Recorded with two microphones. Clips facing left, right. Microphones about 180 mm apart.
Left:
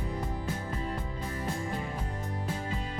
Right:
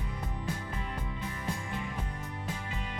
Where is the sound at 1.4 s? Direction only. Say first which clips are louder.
Left 5 dB; 35° left (ahead or behind).